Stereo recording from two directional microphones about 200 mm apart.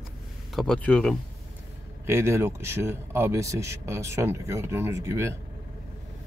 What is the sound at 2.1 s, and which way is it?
Speech, 10° right (ahead or behind).